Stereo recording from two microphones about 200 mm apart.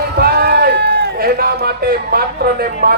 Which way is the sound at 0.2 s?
50° right (ahead or behind).